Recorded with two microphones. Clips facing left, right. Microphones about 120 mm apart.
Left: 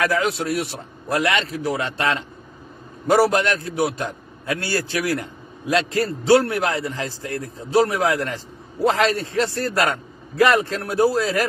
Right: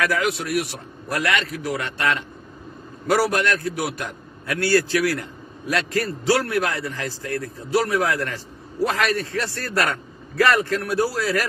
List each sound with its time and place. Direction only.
0.0 s a man's voice: 25° left (ahead or behind)